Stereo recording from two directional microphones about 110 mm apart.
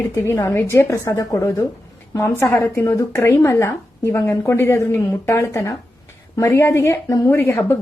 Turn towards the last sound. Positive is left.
turn(degrees=20)  # may be behind; listen again after turning